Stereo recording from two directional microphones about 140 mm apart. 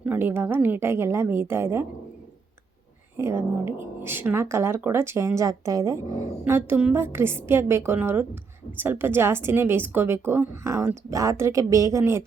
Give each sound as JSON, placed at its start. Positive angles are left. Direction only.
{"t": 0.0, "sound": "speech", "side_deg": -15}
{"t": 3.2, "sound": "speech", "side_deg": -20}